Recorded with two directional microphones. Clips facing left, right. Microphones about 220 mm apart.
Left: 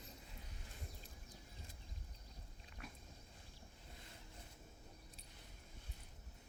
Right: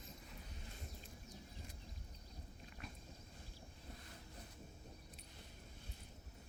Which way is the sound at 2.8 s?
Centre (ahead or behind).